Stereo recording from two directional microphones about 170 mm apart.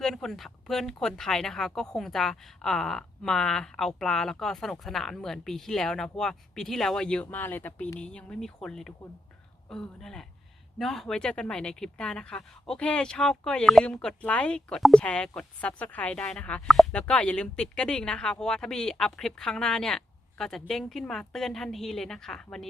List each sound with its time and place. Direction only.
0.0 s speech: centre (ahead or behind)